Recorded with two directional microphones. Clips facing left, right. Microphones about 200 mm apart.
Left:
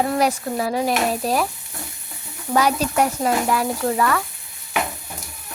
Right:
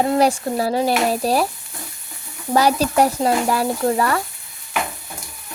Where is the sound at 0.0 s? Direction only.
30° right (ahead or behind).